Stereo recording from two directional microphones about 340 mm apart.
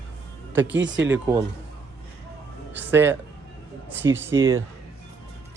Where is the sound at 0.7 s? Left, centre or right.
Right.